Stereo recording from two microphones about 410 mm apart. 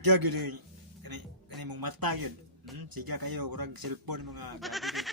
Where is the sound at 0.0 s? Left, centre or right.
Right.